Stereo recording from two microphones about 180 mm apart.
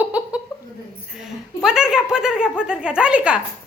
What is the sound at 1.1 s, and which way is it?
A woman's voice, 5° right (ahead or behind).